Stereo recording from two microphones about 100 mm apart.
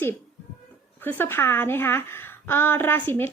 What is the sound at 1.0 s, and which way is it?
A woman's voice, 20° left (ahead or behind).